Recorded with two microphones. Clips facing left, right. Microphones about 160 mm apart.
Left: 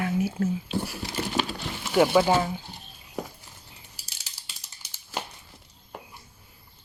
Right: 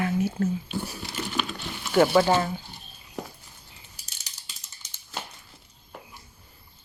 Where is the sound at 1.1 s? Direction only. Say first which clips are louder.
Left 3 dB; 35° left (ahead or behind).